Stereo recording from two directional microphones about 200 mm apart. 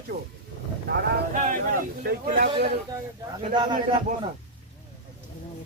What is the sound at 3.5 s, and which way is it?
Speech, 25° right (ahead or behind).